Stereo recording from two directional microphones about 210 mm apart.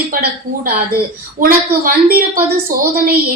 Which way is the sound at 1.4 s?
45° right (ahead or behind).